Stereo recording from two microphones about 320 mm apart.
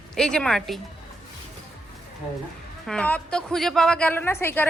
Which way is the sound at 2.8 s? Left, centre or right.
Centre.